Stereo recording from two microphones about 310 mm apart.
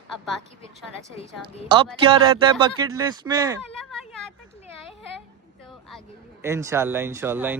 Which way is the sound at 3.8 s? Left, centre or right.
Centre.